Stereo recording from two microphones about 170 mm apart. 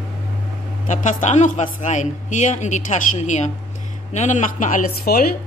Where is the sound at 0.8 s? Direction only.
45° left (ahead or behind).